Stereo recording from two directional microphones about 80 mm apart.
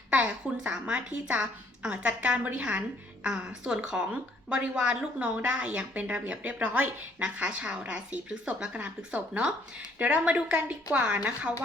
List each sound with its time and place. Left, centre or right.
0.1 s a woman's voice: centre